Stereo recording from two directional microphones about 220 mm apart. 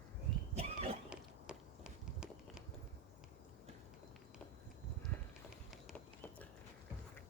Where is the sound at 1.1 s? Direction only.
5° right (ahead or behind).